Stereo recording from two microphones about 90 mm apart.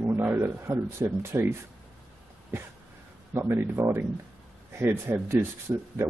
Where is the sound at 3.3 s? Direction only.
25° right (ahead or behind).